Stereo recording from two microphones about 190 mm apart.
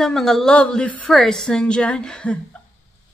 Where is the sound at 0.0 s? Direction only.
Centre (ahead or behind).